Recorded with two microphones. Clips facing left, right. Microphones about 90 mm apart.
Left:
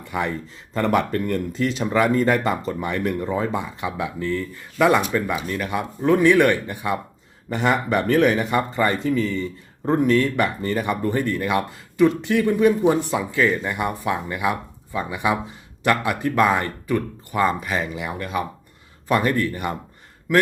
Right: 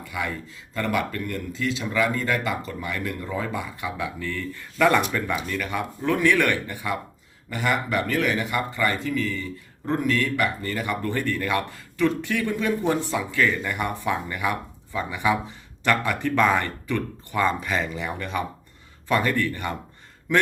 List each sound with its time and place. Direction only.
0.0 s speech: 30° left (ahead or behind)
7.5 s speech: 35° left (ahead or behind)
8.4 s speech: 30° left (ahead or behind); by 18.4 s 5° left (ahead or behind)
19.0 s speech: 15° left (ahead or behind)